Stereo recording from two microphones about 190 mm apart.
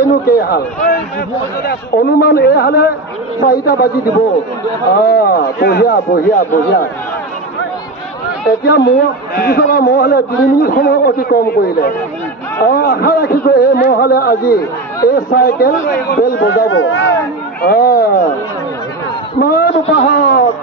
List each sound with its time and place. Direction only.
0.3 s a man's voice: 55° left (ahead or behind)
1.6 s a man's voice: 55° left (ahead or behind)
4.9 s a man's voice: 55° left (ahead or behind)
8.5 s a man's voice: 55° left (ahead or behind); by 17.0 s 85° left
17.6 s a man's voice: 55° left (ahead or behind)
19.3 s a man's voice: 55° left (ahead or behind)